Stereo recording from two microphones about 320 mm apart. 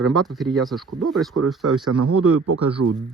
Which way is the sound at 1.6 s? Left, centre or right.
Right.